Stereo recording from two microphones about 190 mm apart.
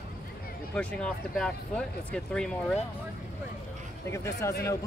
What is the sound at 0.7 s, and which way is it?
Speech, 5° left (ahead or behind).